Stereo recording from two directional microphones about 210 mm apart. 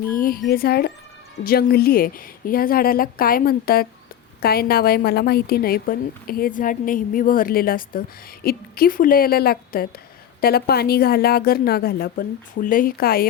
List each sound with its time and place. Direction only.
0.1 s a woman's voice: 45° left (ahead or behind)